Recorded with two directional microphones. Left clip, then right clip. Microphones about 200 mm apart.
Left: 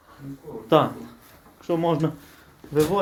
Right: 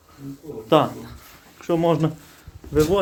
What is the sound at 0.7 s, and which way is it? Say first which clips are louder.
Speech: right 1 dB; centre (ahead or behind).